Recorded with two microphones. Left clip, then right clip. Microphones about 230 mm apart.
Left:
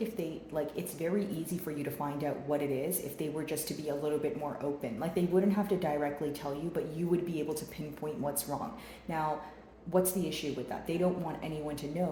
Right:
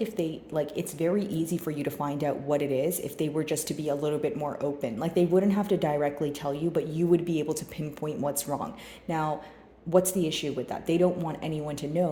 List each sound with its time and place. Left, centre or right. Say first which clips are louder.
0.0 s a woman's voice: right 6 dB; right
9.9 s a woman's voice: right 6 dB; right